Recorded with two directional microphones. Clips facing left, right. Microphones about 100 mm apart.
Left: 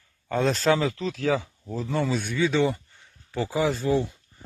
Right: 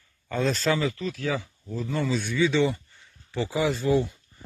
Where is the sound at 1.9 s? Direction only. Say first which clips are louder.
Left 1 dB; 60° left (ahead or behind).